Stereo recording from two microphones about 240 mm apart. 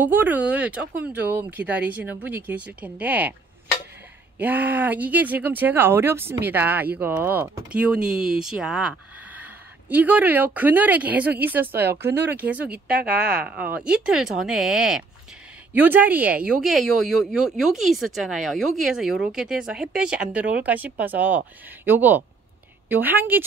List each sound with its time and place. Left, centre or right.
0.0 s speech: centre
4.4 s speech: centre
12.7 s speech: right
13.4 s speech: centre